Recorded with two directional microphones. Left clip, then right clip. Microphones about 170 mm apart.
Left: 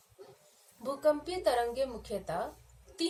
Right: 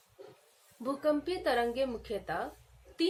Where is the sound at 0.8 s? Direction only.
50° right (ahead or behind).